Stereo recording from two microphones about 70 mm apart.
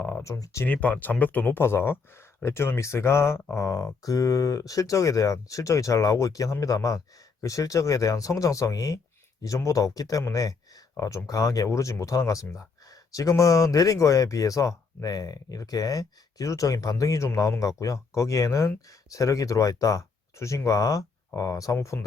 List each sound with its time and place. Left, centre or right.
0.2 s speech: left
0.6 s speech: left
1.6 s speech: left